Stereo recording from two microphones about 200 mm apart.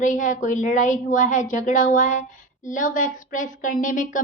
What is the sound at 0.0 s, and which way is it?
Speech, 40° left (ahead or behind).